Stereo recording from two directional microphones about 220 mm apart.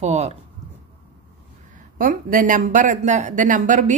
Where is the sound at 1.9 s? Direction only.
40° right (ahead or behind).